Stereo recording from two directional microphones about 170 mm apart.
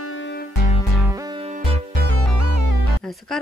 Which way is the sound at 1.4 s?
35° right (ahead or behind).